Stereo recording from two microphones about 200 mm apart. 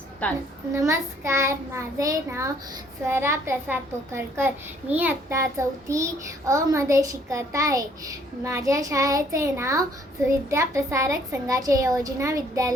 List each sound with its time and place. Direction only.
0.2 s a child's voice: 5° left (ahead or behind)
0.7 s a child's voice: 15° right (ahead or behind)